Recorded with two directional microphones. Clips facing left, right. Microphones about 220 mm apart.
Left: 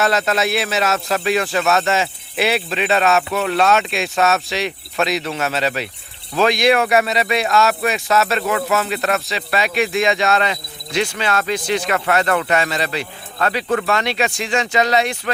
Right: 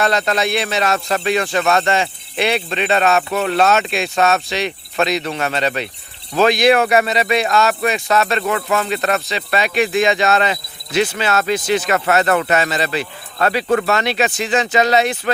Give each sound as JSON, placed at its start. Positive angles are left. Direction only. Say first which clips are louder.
{"t": 0.0, "sound": "speech", "louder": "even", "side_deg": 5}
{"t": 11.9, "sound": "speech", "louder": "right 1 dB", "side_deg": -45}
{"t": 12.5, "sound": "speech", "louder": "right 2 dB", "side_deg": 0}
{"t": 13.7, "sound": "speech", "louder": "right 1 dB", "side_deg": -40}
{"t": 14.0, "sound": "speech", "louder": "right 2 dB", "side_deg": -5}